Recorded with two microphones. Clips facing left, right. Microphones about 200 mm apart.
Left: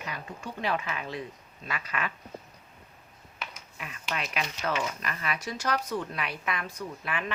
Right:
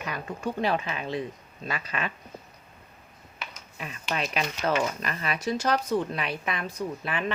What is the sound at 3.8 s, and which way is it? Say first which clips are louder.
A woman's voice: right 4 dB; 30° right (ahead or behind).